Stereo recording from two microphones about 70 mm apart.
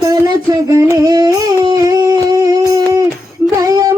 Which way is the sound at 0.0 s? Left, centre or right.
Right.